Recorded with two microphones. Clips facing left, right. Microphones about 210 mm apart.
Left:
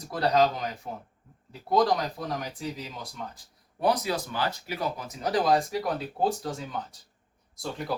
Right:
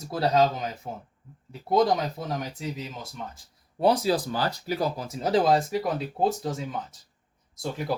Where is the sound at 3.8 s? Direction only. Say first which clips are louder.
Right 4 dB; 30° right (ahead or behind).